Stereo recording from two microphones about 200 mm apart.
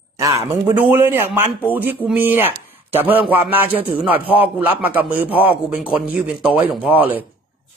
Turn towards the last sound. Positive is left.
turn(degrees=-10)  # may be behind; listen again after turning